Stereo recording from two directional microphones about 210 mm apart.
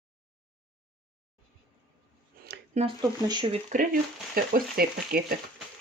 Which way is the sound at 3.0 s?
20° right (ahead or behind).